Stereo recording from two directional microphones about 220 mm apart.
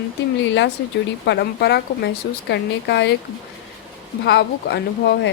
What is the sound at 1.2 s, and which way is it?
Speech, 50° left (ahead or behind).